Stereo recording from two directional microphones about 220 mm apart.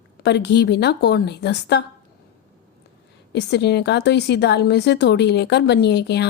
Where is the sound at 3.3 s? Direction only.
50° left (ahead or behind).